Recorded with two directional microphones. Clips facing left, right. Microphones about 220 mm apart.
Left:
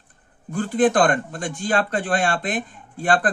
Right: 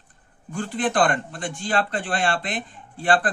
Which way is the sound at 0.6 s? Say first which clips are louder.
Left 5 dB; 40° left (ahead or behind).